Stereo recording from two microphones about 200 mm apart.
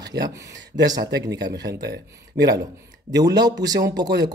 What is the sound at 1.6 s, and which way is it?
Speech, 55° right (ahead or behind).